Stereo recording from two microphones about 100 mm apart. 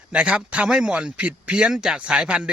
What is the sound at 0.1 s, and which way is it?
A man's voice, 10° right (ahead or behind).